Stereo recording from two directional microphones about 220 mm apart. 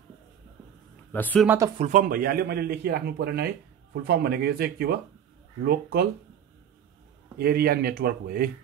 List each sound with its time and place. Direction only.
1.1 s speech: 5° left (ahead or behind)
1.8 s a man's voice: 35° right (ahead or behind)
7.3 s a man's voice: 45° right (ahead or behind)